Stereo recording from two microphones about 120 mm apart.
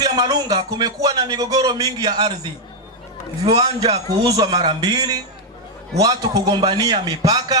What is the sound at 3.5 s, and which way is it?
Speech, 35° right (ahead or behind).